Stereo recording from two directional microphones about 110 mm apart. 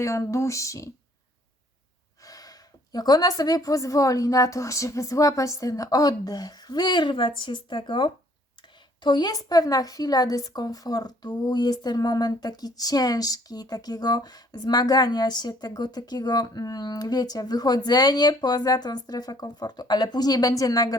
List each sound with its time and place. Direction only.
0.0 s speech: 30° left (ahead or behind)
2.2 s speech: 35° left (ahead or behind)